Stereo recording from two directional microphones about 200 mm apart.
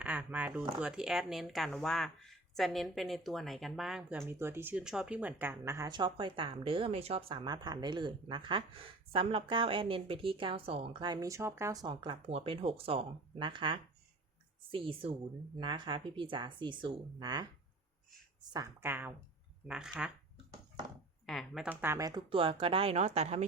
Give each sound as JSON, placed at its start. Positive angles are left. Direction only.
{"t": 0.0, "sound": "a sound", "side_deg": -5}
{"t": 0.8, "sound": "speech", "side_deg": -5}
{"t": 18.5, "sound": "a woman's voice", "side_deg": -15}
{"t": 21.2, "sound": "speech", "side_deg": 0}